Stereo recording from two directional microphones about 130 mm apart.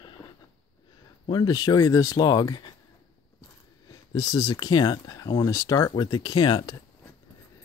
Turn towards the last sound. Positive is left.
turn(degrees=35)  # may be behind; listen again after turning